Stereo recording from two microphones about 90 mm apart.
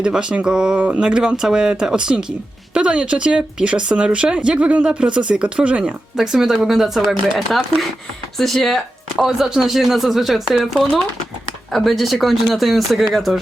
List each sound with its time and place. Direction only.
0.0 s speech: 10° right (ahead or behind)